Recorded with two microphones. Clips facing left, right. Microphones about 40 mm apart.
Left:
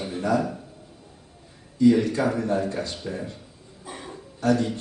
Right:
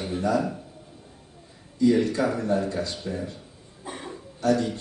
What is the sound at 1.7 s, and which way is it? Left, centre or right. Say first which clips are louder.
A man's voice: left 2 dB; left.